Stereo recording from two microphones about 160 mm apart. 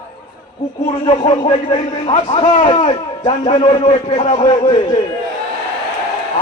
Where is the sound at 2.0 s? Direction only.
45° left (ahead or behind).